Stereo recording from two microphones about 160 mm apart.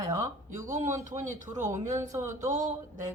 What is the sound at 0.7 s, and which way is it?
Speech, 50° right (ahead or behind).